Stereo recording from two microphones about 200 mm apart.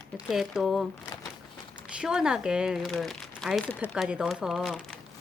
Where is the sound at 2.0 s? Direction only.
5° right (ahead or behind).